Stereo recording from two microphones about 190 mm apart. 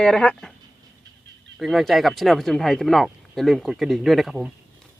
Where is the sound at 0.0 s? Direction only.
5° left (ahead or behind).